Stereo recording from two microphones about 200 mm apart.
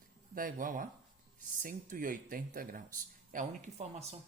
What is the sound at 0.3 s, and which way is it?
Speech, 45° right (ahead or behind).